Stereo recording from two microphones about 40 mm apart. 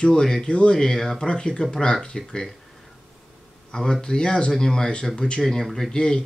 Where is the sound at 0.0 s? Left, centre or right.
Centre.